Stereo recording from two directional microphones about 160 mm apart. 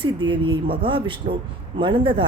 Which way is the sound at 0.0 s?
30° right (ahead or behind).